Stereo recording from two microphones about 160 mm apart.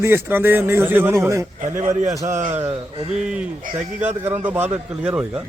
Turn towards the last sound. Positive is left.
turn(degrees=-10)  # may be behind; listen again after turning